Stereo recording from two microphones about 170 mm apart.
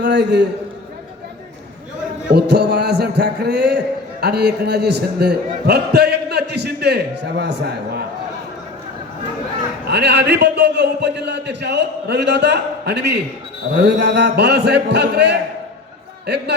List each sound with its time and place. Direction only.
0.0 s a man's voice: 85° right
2.3 s a man's voice: 75° right (ahead or behind)
9.8 s a man's voice: 85° right